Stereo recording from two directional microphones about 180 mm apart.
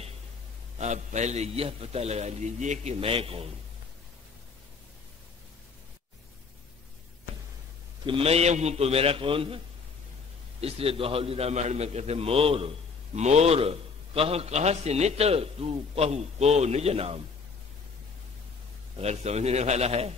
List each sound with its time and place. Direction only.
0.7 s a man's voice: 40° right (ahead or behind)
8.1 s a man's voice: 35° right (ahead or behind)
10.6 s a man's voice: 30° right (ahead or behind)
18.9 s a man's voice: 35° right (ahead or behind)